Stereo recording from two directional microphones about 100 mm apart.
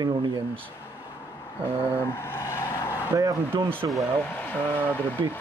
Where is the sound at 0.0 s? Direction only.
45° right (ahead or behind).